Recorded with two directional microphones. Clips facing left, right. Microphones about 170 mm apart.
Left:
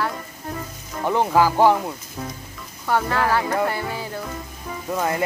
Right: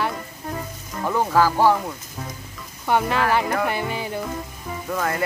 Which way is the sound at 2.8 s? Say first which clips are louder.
Right 1 dB; 20° right (ahead or behind).